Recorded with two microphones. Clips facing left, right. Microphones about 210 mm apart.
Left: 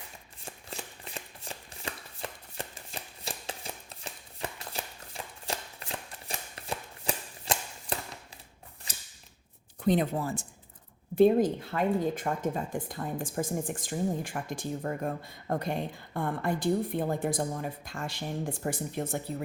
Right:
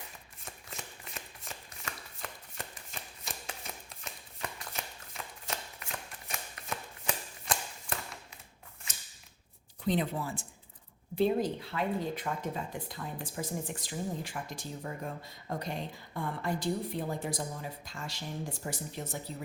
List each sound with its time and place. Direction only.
0.4 s shuffling cards: 30° left (ahead or behind)
2.2 s chopping: 30° left (ahead or behind)
2.6 s shuffling cards: 30° left (ahead or behind)
8.9 s mechanisms: 35° left (ahead or behind)
9.8 s speech: 50° left (ahead or behind)